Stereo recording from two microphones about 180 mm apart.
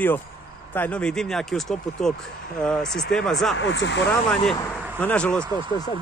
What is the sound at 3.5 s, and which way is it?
Speech, 90° left.